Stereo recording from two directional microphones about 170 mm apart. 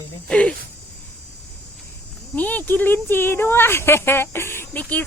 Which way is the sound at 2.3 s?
10° left (ahead or behind).